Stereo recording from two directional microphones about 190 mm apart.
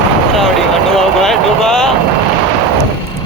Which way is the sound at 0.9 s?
Centre (ahead or behind).